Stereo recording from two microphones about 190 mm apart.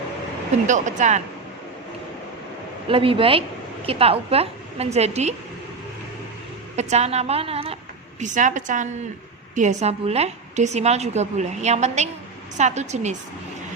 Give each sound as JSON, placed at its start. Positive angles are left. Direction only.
{"t": 0.7, "sound": "a woman's voice", "side_deg": -40}
{"t": 2.9, "sound": "a woman's voice", "side_deg": -30}
{"t": 6.7, "sound": "a woman's voice", "side_deg": -35}